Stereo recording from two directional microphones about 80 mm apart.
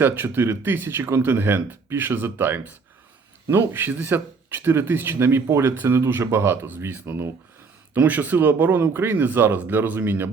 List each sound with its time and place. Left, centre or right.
0.0 s speech: right